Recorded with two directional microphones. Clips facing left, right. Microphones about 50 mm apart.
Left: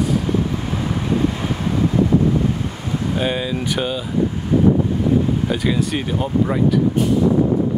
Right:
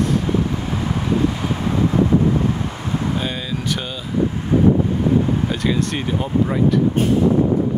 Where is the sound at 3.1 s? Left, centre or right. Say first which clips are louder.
Left 3 dB; centre.